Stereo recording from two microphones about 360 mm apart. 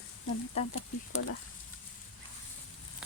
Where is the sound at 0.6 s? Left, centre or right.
Centre.